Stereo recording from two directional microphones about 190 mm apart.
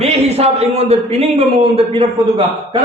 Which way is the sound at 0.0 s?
35° right (ahead or behind).